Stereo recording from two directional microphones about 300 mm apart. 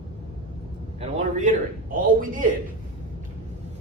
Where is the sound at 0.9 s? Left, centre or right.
Right.